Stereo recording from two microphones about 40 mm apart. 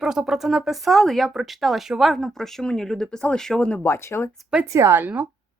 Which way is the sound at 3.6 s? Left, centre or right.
Left.